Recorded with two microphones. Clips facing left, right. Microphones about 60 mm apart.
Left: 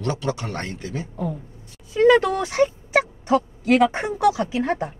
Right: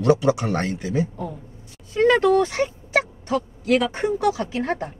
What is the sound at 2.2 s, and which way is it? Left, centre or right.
A woman's voice, centre.